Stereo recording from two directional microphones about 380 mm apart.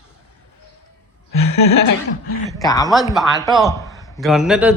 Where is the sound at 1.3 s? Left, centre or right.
Left.